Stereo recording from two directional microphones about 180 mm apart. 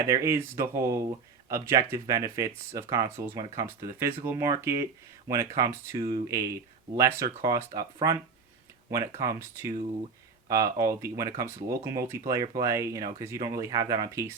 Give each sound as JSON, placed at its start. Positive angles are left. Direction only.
{"t": 0.1, "sound": "speech", "side_deg": -15}
{"t": 8.9, "sound": "speech", "side_deg": -20}